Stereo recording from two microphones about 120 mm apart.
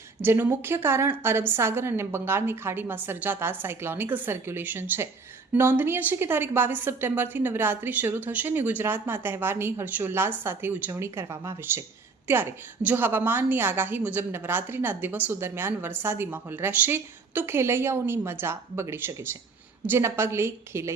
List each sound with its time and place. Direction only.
0.2 s a woman's voice: 20° right (ahead or behind)